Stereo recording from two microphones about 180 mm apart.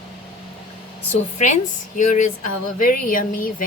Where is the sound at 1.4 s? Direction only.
40° left (ahead or behind).